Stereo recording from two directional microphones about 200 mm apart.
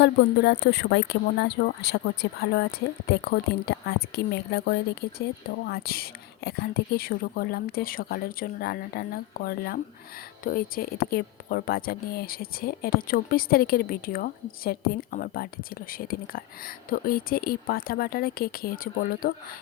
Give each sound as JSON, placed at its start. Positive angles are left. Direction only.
{"t": 0.0, "sound": "speech", "side_deg": 55}